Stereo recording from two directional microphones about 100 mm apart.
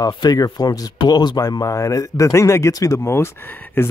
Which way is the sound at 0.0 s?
40° left (ahead or behind).